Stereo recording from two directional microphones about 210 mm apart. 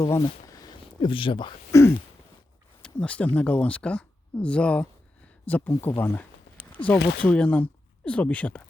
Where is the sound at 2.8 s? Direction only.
5° left (ahead or behind).